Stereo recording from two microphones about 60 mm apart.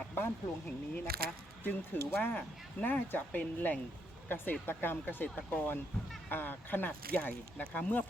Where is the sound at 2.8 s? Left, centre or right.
Left.